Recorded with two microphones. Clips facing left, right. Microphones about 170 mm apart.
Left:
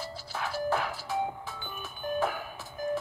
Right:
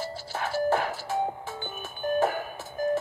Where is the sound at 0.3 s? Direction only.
50° right (ahead or behind).